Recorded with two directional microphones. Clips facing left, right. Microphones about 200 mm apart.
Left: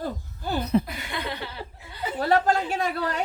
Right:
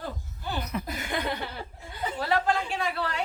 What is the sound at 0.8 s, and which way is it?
Chuckle, 50° right (ahead or behind).